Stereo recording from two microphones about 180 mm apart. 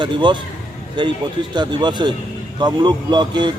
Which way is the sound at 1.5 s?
25° right (ahead or behind).